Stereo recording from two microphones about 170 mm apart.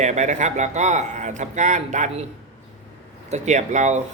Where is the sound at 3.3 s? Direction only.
45° right (ahead or behind).